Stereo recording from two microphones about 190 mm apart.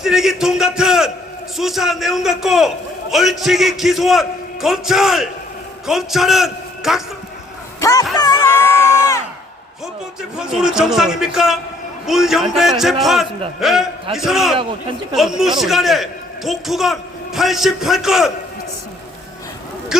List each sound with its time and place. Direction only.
0.0 s a man's voice: centre (ahead or behind)
7.8 s speech: 15° left (ahead or behind)
8.1 s crowd: 20° left (ahead or behind)
10.2 s a man's voice: 5° right (ahead or behind)
19.9 s speech: 5° right (ahead or behind)